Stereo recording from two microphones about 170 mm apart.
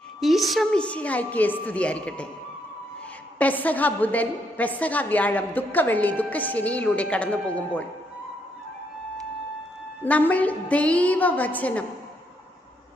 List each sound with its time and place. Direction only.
0.2 s a woman's voice: centre (ahead or behind)
3.3 s a woman's voice: 10° left (ahead or behind)
10.0 s a woman's voice: 10° left (ahead or behind)